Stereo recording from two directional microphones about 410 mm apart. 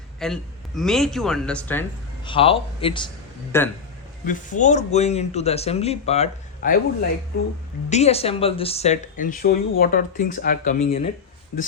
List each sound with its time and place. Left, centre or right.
0.2 s speech: centre
4.3 s speech: centre
7.9 s speech: centre